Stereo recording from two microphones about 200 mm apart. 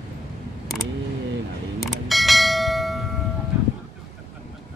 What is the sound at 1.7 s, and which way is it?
Bell, centre (ahead or behind).